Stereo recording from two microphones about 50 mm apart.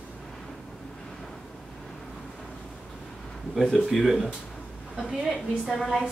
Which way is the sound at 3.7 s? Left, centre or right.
Centre.